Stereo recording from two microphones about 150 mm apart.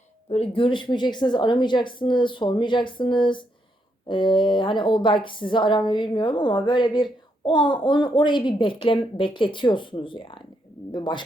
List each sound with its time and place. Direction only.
0.3 s a woman's voice: 40° left (ahead or behind)